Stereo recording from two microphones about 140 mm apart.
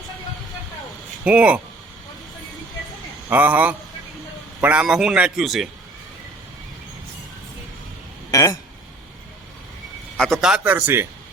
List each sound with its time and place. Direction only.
1.2 s speech: 10° right (ahead or behind)
3.2 s a man's voice: 10° right (ahead or behind)
8.3 s speech: 25° left (ahead or behind)
10.2 s speech: 5° left (ahead or behind); by 11.0 s 15° right (ahead or behind)